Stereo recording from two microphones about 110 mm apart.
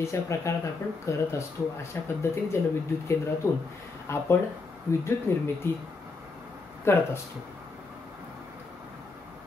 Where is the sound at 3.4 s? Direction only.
25° left (ahead or behind).